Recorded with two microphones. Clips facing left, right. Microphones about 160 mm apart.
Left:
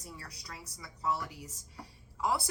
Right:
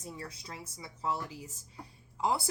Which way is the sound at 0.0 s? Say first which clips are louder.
Right 5 dB; 25° right (ahead or behind).